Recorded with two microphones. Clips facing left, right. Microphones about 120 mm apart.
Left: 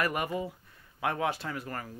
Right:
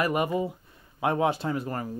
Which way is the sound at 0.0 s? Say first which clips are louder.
Right 5 dB; 20° right (ahead or behind).